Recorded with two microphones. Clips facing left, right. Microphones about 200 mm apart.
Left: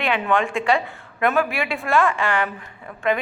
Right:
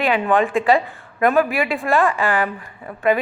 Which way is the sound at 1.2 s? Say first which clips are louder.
Right 4 dB; 35° right (ahead or behind).